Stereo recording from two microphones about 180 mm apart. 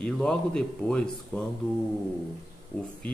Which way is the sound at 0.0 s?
5° left (ahead or behind).